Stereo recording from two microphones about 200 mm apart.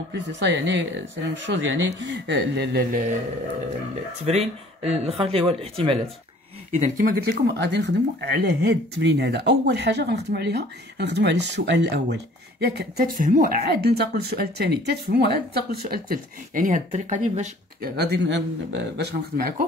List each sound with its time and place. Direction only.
0.1 s speech: 60° right (ahead or behind)
4.3 s speech: 30° right (ahead or behind)
17.9 s speech: 55° right (ahead or behind)